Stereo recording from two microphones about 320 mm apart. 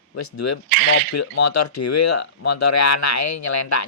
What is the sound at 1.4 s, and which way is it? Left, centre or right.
Speech, left.